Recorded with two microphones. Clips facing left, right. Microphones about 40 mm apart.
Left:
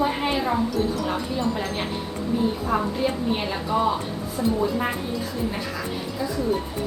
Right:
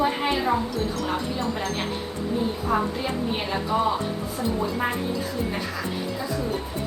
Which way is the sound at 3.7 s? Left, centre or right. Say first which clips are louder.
Left 1 dB; centre.